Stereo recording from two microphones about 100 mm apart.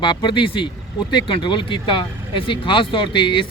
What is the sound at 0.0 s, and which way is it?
Speech, 55° left (ahead or behind).